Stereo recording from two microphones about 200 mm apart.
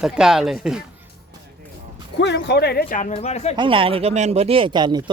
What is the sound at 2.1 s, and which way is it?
Speech, 60° left (ahead or behind).